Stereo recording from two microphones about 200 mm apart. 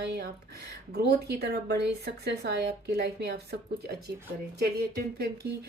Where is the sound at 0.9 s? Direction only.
50° right (ahead or behind).